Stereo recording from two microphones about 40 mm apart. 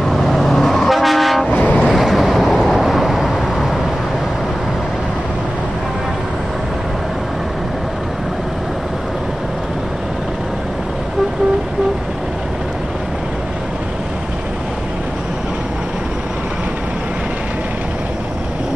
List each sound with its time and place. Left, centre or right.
0.0 s vehicle: centre
1.5 s vehicle: left
1.9 s vehicle: centre